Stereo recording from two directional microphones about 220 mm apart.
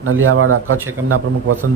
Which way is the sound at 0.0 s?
70° right (ahead or behind).